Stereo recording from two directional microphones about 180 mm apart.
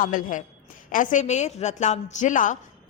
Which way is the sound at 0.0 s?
50° left (ahead or behind).